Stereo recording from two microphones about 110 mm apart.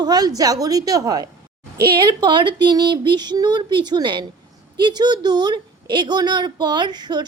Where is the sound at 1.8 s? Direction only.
45° right (ahead or behind).